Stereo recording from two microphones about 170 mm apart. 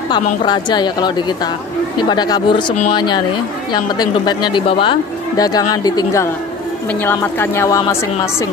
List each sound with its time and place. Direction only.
0.1 s a woman's voice: 25° left (ahead or behind)